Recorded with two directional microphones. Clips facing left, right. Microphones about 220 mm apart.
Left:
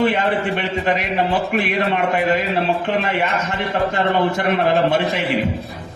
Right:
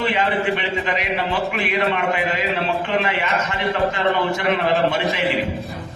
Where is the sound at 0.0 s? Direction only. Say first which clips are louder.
Left 3 dB; 50° left (ahead or behind).